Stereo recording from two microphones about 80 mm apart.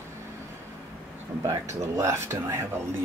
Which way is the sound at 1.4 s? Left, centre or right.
Right.